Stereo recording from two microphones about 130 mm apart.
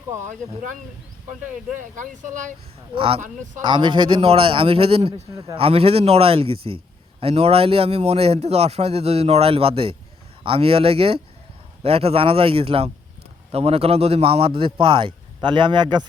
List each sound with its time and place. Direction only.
1.8 s speech: 75° right (ahead or behind)
2.9 s a man's voice: 45° right (ahead or behind)
5.3 s a man's voice: 25° right (ahead or behind)
5.5 s a man's voice: 50° right (ahead or behind)